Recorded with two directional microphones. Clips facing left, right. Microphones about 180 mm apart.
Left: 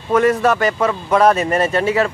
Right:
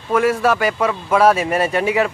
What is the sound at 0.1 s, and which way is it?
Speech, 5° right (ahead or behind).